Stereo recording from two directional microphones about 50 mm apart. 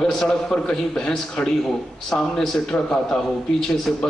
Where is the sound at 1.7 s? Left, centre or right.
Centre.